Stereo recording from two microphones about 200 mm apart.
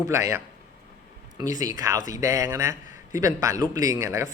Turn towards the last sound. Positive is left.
turn(degrees=-15)  # may be behind; listen again after turning